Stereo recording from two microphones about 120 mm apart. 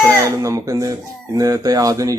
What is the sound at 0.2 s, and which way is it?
Speech, 25° right (ahead or behind).